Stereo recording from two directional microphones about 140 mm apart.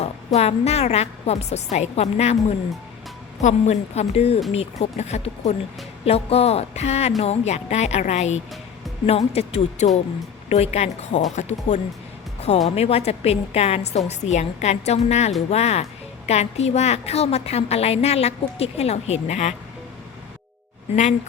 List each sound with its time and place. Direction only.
0.3 s a woman's voice: 50° left (ahead or behind)
3.4 s a woman's voice: 50° left (ahead or behind)